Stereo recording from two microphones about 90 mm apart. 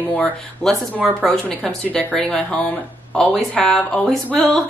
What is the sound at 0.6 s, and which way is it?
Speech, centre (ahead or behind).